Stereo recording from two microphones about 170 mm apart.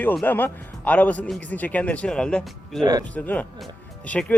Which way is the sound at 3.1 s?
10° left (ahead or behind).